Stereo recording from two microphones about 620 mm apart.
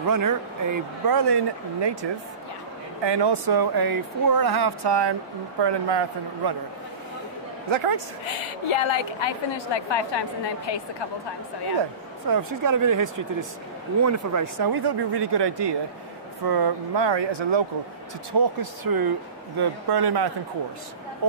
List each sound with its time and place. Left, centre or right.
0.0 s speech: right
7.7 s a woman's voice: right
8.6 s a woman's voice: left
12.3 s speech: right